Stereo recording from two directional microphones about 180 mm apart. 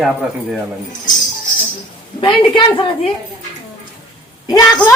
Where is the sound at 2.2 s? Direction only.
30° left (ahead or behind).